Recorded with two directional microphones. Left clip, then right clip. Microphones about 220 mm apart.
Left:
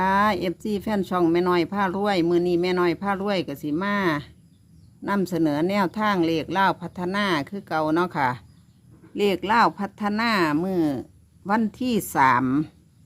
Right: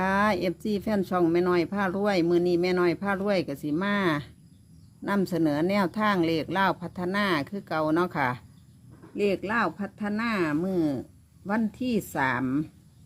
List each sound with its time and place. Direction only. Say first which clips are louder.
0.0 s speech: left 4 dB; 10° left (ahead or behind)
9.1 s speech: left 6 dB; 20° left (ahead or behind)